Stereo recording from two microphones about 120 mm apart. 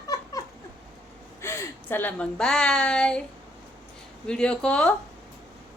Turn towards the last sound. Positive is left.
turn(degrees=5)  # may be behind; listen again after turning